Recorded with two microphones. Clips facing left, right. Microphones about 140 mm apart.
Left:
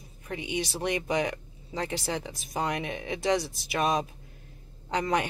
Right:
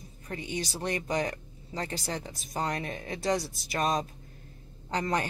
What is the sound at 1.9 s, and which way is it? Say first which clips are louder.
Speech: left 3 dB; 5° left (ahead or behind).